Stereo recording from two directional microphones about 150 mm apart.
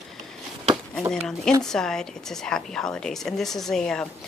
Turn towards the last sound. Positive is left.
turn(degrees=5)  # may be behind; listen again after turning